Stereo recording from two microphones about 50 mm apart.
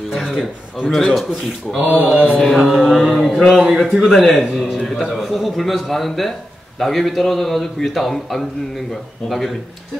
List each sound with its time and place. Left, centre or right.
0.8 s a man's voice: centre
1.8 s speech: right
2.5 s a man's voice: centre